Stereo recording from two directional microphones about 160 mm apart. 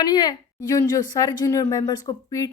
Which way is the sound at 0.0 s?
25° left (ahead or behind).